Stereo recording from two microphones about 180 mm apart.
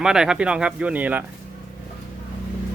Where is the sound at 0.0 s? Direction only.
5° right (ahead or behind).